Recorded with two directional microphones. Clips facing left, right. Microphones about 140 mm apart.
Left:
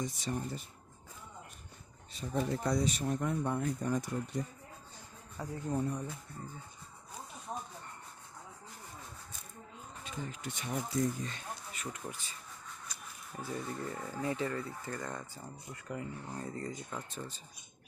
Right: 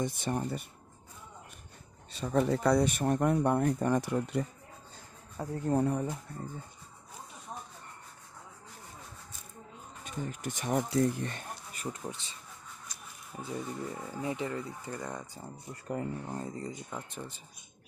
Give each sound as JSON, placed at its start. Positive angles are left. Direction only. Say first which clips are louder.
{"t": 0.0, "sound": "speech", "louder": "right 5 dB", "side_deg": -60}
{"t": 2.1, "sound": "speech", "louder": "right 6 dB", "side_deg": -75}
{"t": 5.5, "sound": "speech", "louder": "right 6 dB", "side_deg": -60}
{"t": 10.0, "sound": "speech", "louder": "right 4 dB", "side_deg": -50}
{"t": 10.9, "sound": "speech", "louder": "right 5 dB", "side_deg": -65}
{"t": 11.9, "sound": "speech", "louder": "right 5 dB", "side_deg": -25}
{"t": 13.3, "sound": "speech", "louder": "right 2 dB", "side_deg": -10}
{"t": 15.7, "sound": "speech", "louder": "right 6 dB", "side_deg": -45}
{"t": 16.5, "sound": "speech", "louder": "right 1 dB", "side_deg": -15}